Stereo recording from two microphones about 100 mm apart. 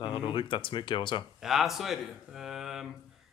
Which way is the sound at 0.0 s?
50° left (ahead or behind).